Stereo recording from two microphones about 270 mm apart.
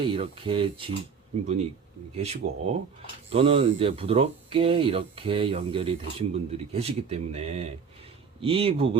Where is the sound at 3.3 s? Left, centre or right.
Right.